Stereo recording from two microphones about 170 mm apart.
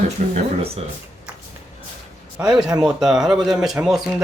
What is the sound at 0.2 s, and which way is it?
Speech, 45° right (ahead or behind).